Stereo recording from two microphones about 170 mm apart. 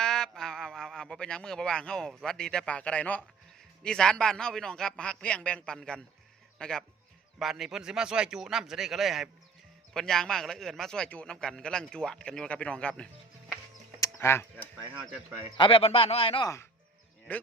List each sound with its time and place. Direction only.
0.0 s a man's voice: 5° left (ahead or behind)
14.2 s speech: 15° left (ahead or behind)
15.5 s speech: 30° left (ahead or behind)
17.3 s speech: 10° left (ahead or behind)